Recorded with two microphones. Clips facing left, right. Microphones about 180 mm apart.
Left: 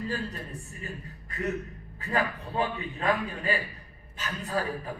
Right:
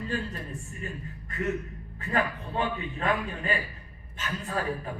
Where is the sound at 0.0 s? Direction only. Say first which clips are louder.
Even; 35° left (ahead or behind).